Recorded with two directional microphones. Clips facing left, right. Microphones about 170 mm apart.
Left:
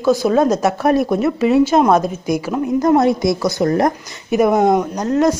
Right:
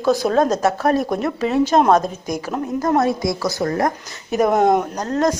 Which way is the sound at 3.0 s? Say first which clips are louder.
Left 4 dB; 20° left (ahead or behind).